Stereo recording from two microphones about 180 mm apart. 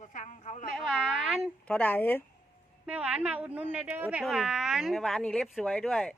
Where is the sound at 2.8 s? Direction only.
5° right (ahead or behind).